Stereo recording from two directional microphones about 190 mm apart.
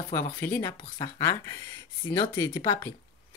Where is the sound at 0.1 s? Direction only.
15° left (ahead or behind).